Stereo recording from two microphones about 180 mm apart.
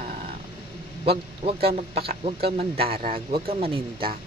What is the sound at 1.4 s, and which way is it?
Speech, 35° right (ahead or behind).